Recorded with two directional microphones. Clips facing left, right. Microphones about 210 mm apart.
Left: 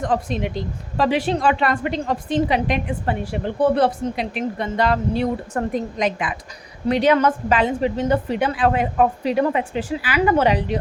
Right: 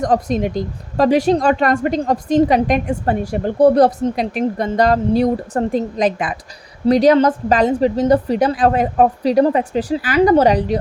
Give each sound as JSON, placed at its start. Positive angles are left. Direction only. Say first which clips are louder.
{"t": 0.0, "sound": "a woman's voice", "louder": "right 5 dB", "side_deg": -40}